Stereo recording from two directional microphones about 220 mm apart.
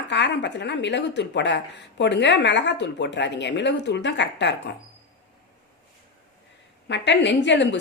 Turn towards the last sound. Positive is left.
turn(degrees=55)  # may be behind; listen again after turning